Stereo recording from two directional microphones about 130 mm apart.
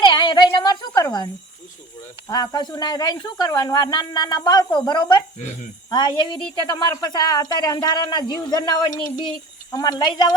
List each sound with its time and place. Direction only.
0.0 s a sound: 35° left (ahead or behind)
1.0 s a woman's voice: 30° left (ahead or behind)
2.3 s a woman's voice: 30° left (ahead or behind)